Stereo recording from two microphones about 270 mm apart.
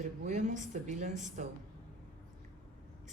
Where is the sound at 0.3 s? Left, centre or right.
Right.